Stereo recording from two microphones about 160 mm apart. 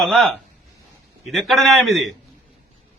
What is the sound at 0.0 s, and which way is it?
A man's voice, centre (ahead or behind).